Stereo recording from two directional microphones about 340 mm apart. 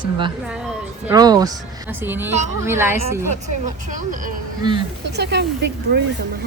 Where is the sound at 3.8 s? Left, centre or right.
Right.